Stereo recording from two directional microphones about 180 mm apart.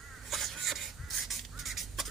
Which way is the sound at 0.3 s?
Centre (ahead or behind).